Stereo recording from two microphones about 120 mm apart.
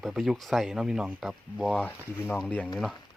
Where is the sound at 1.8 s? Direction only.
15° left (ahead or behind).